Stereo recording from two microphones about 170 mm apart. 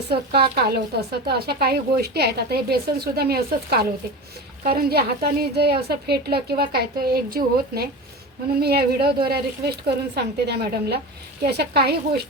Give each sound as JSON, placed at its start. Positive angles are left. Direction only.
{"t": 0.1, "sound": "a woman's voice", "side_deg": -70}